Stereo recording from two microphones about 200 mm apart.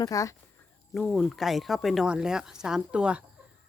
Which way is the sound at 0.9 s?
Centre (ahead or behind).